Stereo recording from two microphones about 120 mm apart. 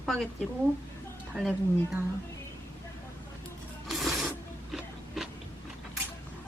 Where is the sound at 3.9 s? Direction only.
Centre (ahead or behind).